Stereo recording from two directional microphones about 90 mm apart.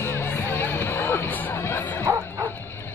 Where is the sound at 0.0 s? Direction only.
25° left (ahead or behind).